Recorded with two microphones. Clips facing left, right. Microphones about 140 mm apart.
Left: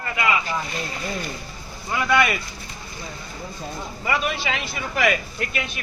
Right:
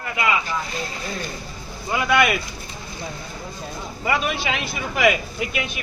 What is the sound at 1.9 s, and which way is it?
Speech, 10° right (ahead or behind).